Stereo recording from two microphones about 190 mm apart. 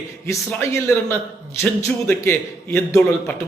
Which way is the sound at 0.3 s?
15° left (ahead or behind).